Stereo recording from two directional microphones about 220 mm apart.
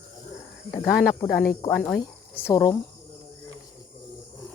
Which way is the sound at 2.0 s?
15° left (ahead or behind).